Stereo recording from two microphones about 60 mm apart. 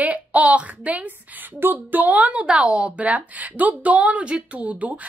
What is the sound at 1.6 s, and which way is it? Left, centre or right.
A woman's voice, right.